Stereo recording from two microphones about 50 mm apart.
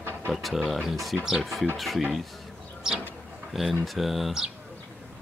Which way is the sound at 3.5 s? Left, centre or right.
Centre.